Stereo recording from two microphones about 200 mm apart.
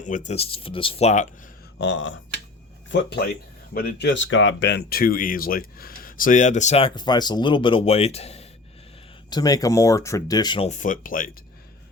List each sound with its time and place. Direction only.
0.0 s speech: 40° left (ahead or behind)
1.8 s speech: 65° left (ahead or behind); by 8.4 s 30° left (ahead or behind)
9.3 s speech: 20° left (ahead or behind)
10.7 s speech: 40° left (ahead or behind)